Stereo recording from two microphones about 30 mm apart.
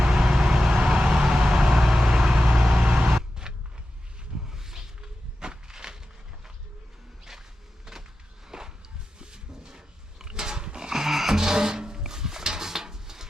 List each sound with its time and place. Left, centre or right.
0.0 s vehicle: centre
2.5 s vehicle: centre
2.7 s vehicle: right
3.4 s a sound: right
4.4 s a sound: centre
8.4 s music: right
9.1 s pig: right
10.8 s music: centre